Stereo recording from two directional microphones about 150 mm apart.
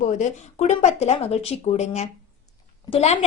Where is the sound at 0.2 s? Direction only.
50° left (ahead or behind).